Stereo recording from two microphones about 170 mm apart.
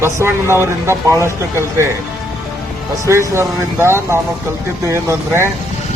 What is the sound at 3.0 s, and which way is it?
Speech, 15° right (ahead or behind).